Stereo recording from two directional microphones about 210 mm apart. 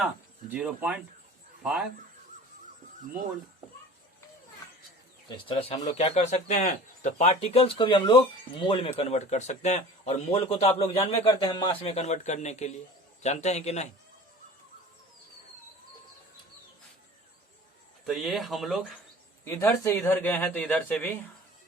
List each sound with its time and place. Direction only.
0.5 s speech: 5° right (ahead or behind)
5.3 s a man's voice: 25° left (ahead or behind)
18.0 s speech: centre (ahead or behind)
19.5 s speech: 10° left (ahead or behind)